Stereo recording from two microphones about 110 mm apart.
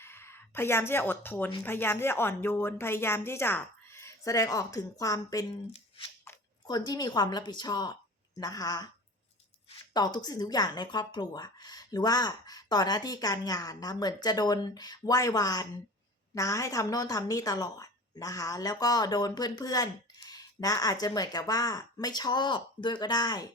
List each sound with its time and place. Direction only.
0.0 s a woman's voice: 20° left (ahead or behind)
6.7 s speech: 40° left (ahead or behind)
9.9 s speech: 40° left (ahead or behind)